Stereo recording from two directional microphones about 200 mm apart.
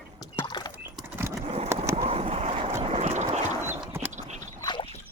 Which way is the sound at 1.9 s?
30° right (ahead or behind).